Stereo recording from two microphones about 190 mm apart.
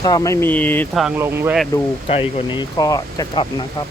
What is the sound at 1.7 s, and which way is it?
Speech, 15° left (ahead or behind).